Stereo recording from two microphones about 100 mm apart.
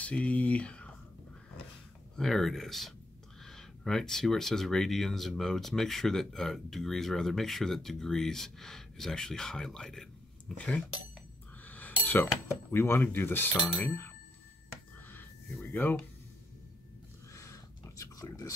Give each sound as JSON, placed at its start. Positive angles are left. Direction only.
{"t": 0.0, "sound": "speech", "side_deg": 10}
{"t": 2.1, "sound": "speech", "side_deg": 5}
{"t": 11.6, "sound": "a sound", "side_deg": 15}
{"t": 12.7, "sound": "speech", "side_deg": 25}
{"t": 15.6, "sound": "speech", "side_deg": 20}
{"t": 17.3, "sound": "a sound", "side_deg": 30}